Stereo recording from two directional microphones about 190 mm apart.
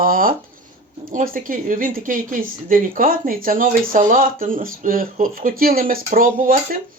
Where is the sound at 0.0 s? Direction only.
50° right (ahead or behind).